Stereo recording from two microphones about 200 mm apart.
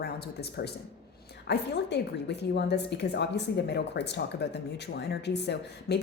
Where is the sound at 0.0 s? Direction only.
55° left (ahead or behind).